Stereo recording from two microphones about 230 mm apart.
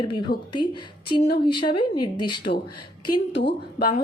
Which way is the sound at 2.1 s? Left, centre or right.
Centre.